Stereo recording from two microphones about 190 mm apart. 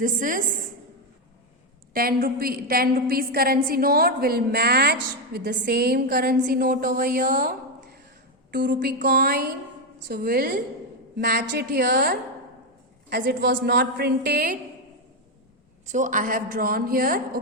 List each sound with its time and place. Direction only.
0.0 s a woman's voice: 45° right (ahead or behind)
1.9 s a woman's voice: 50° right (ahead or behind)
8.4 s a woman's voice: 65° right (ahead or behind)
15.9 s a woman's voice: 40° right (ahead or behind)